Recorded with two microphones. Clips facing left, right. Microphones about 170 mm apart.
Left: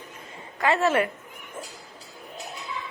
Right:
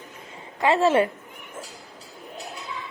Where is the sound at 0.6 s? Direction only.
25° right (ahead or behind).